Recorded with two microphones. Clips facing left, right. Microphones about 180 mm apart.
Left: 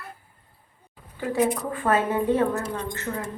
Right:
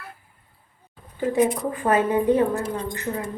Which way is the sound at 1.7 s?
15° right (ahead or behind).